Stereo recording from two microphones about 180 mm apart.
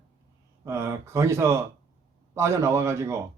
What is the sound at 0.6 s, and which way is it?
Speech, 15° right (ahead or behind).